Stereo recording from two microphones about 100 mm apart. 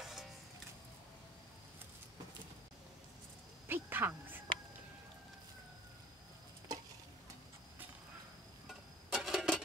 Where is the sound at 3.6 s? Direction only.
20° right (ahead or behind).